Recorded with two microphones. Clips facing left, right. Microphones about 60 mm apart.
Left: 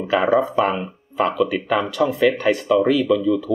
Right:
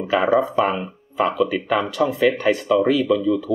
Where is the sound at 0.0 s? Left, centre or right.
Centre.